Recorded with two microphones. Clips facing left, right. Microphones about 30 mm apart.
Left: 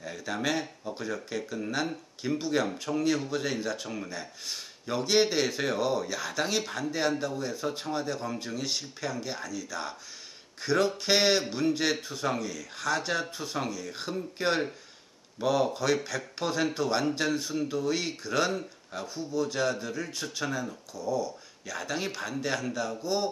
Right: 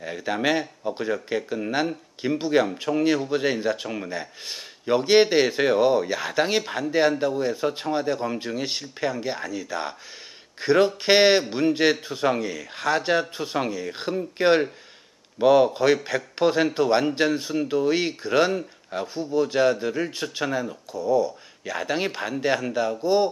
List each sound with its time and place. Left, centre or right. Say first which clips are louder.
0.0 s a man's voice: right 7 dB; right